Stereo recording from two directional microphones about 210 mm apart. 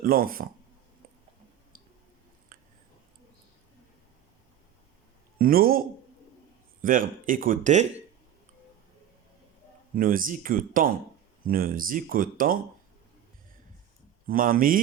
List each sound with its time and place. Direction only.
0.0 s speech: 45° right (ahead or behind)
2.5 s a sound: 40° right (ahead or behind)
5.4 s speech: 45° right (ahead or behind)
6.8 s speech: 40° right (ahead or behind)
9.9 s speech: 40° right (ahead or behind)
14.3 s speech: 40° right (ahead or behind)